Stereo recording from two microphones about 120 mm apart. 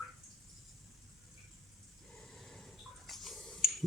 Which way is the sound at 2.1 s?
5° left (ahead or behind).